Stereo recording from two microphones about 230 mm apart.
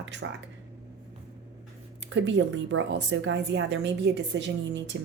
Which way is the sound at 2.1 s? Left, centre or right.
Right.